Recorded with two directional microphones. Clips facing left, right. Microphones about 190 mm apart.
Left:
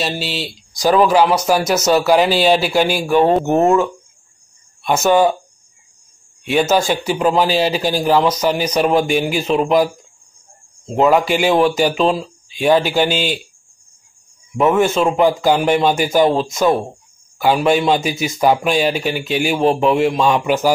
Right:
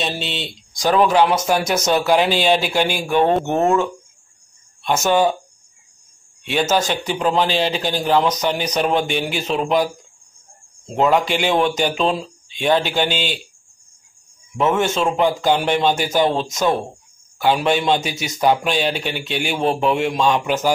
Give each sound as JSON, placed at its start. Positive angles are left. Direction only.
{"t": 0.0, "sound": "speech", "side_deg": 5}
{"t": 6.9, "sound": "speech", "side_deg": 10}
{"t": 11.0, "sound": "speech", "side_deg": 5}
{"t": 14.6, "sound": "speech", "side_deg": 10}